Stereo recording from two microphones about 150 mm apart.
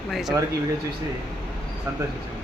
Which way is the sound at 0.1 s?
Centre (ahead or behind).